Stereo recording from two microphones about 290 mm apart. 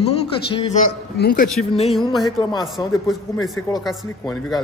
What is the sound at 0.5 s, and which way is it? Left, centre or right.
Speech, centre.